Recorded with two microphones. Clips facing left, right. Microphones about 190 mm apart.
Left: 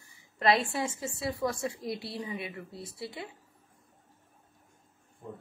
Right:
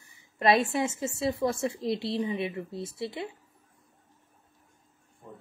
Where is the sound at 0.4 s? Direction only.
20° right (ahead or behind).